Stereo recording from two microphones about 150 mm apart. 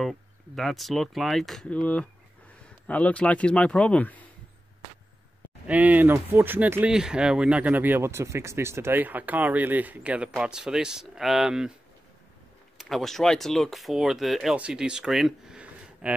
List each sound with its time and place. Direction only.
0.0 s speech: centre (ahead or behind)
2.9 s speech: 10° left (ahead or behind)
5.7 s speech: 10° right (ahead or behind)
12.7 s speech: centre (ahead or behind)